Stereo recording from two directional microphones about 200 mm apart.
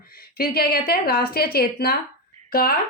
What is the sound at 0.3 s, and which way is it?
Speech, 50° left (ahead or behind).